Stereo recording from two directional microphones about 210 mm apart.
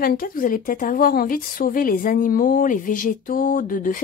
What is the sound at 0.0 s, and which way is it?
Speech, 45° left (ahead or behind).